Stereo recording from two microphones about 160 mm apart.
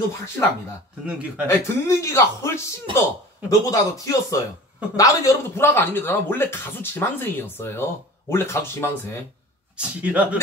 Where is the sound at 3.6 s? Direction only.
20° left (ahead or behind).